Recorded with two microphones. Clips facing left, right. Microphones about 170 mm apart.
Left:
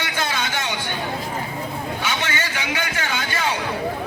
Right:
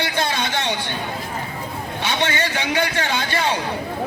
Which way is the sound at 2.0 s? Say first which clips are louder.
Right 7 dB; 30° right (ahead or behind).